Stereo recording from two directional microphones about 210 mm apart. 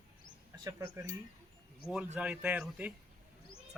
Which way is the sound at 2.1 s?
5° right (ahead or behind).